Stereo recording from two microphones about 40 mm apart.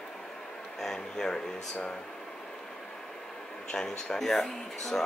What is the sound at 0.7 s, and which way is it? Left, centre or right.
Speech, centre.